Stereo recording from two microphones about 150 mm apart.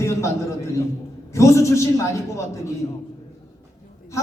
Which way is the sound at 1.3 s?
20° left (ahead or behind).